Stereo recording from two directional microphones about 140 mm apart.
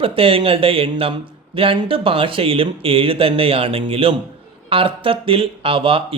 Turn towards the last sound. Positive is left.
turn(degrees=-40)  # may be behind; listen again after turning